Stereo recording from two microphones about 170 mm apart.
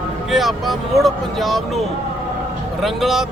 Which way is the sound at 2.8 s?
Centre (ahead or behind).